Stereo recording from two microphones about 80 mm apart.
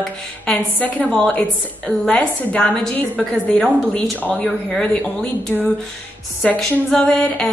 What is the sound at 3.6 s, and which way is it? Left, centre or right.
A woman's voice, centre.